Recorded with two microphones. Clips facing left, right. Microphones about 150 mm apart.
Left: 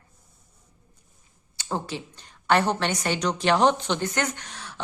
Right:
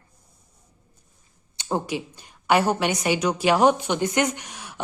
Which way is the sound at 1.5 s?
20° right (ahead or behind).